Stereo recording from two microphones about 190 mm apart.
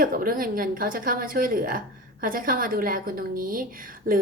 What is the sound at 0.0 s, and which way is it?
A woman's voice, 50° right (ahead or behind).